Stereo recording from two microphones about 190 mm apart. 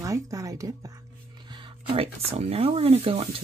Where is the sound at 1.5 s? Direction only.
30° right (ahead or behind).